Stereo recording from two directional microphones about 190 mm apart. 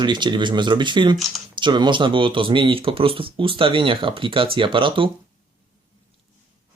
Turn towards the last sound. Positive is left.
turn(degrees=-25)  # may be behind; listen again after turning